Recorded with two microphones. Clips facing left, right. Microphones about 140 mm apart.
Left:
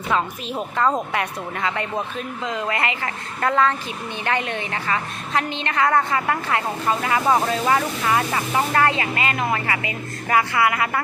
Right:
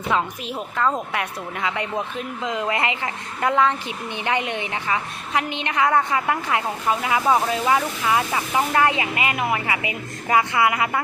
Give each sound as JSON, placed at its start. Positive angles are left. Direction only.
{"t": 1.1, "sound": "speech", "side_deg": -10}